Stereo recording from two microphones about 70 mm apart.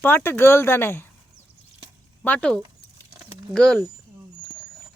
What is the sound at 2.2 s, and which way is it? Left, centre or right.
Speech, left.